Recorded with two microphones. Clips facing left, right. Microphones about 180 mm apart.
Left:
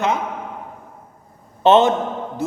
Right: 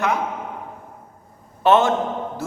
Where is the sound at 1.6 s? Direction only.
20° left (ahead or behind).